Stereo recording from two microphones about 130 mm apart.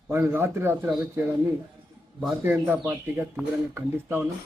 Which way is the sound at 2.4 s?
15° right (ahead or behind).